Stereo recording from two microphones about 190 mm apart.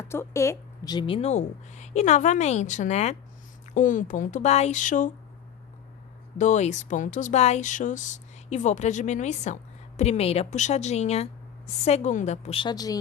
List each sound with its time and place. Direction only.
0.0 s speech: 15° left (ahead or behind); by 5.1 s 40° left (ahead or behind)
6.3 s speech: 40° left (ahead or behind); by 13.0 s 20° left (ahead or behind)